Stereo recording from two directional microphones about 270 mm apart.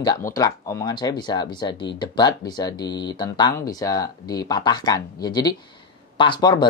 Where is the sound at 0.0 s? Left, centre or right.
Centre.